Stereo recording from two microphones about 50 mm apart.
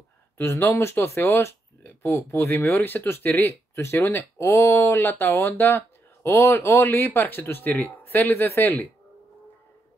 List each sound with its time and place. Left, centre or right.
0.4 s speech: left
4.4 s speech: left
5.0 s speech: left
8.3 s speech: left